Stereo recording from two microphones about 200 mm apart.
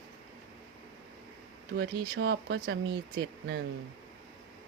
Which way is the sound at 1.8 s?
55° right (ahead or behind).